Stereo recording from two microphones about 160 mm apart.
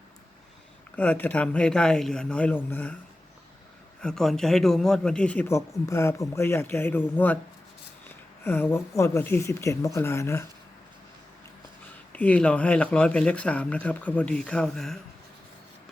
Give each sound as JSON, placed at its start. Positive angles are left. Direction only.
{"t": 0.9, "sound": "speech", "side_deg": 10}
{"t": 4.0, "sound": "speech", "side_deg": 5}
{"t": 8.4, "sound": "speech", "side_deg": 10}
{"t": 12.1, "sound": "speech", "side_deg": 10}